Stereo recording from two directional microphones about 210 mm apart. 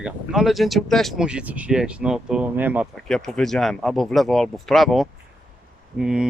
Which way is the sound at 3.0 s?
5° left (ahead or behind).